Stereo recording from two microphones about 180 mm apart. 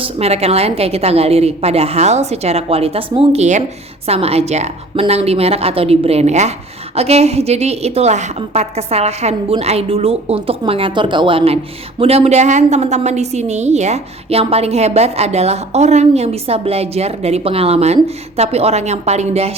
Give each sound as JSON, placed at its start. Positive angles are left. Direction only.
{"t": 0.0, "sound": "a woman's voice", "side_deg": -35}